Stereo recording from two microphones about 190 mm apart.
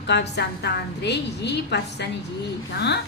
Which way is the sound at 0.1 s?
65° left (ahead or behind).